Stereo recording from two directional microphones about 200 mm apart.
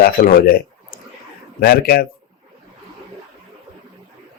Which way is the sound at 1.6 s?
50° left (ahead or behind).